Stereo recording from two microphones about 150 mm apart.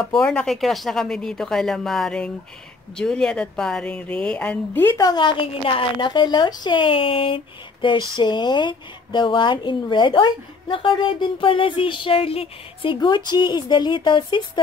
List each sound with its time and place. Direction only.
0.2 s a woman's voice: 5° left (ahead or behind)
4.9 s speech: 30° left (ahead or behind)